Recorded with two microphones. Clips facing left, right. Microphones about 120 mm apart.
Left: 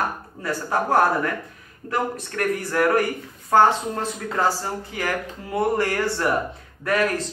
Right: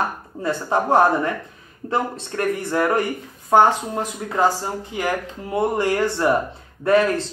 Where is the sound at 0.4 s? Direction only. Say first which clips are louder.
Right 3 dB; 25° right (ahead or behind).